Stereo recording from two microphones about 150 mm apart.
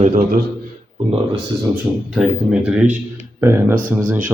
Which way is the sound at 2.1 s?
5° right (ahead or behind).